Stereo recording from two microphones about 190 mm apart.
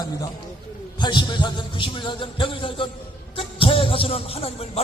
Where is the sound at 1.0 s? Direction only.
25° left (ahead or behind).